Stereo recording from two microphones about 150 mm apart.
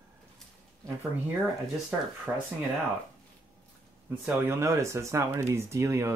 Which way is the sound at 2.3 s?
5° right (ahead or behind).